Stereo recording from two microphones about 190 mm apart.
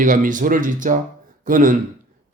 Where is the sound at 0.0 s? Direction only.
45° right (ahead or behind).